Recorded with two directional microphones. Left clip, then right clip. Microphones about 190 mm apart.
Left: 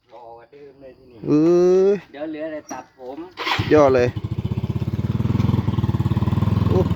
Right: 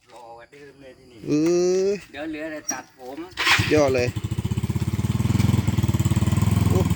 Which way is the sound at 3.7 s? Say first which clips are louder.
Left 5 dB; 25° left (ahead or behind).